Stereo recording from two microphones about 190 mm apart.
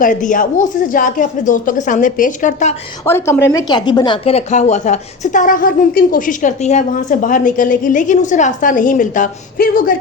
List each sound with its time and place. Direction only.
0.0 s a woman's voice: 45° left (ahead or behind)
3.1 s a woman's voice: 10° left (ahead or behind); by 9.9 s 45° left (ahead or behind)